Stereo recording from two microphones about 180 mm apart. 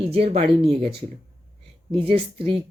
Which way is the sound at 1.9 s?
30° right (ahead or behind).